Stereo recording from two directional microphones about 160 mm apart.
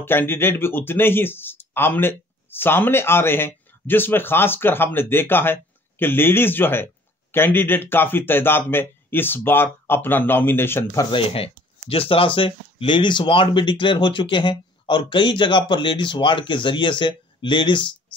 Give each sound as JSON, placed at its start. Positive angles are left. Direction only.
{"t": 0.0, "sound": "speech", "side_deg": 15}
{"t": 11.1, "sound": "speech", "side_deg": 35}